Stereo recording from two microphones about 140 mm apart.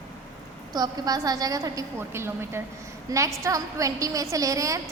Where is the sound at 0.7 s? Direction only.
30° right (ahead or behind).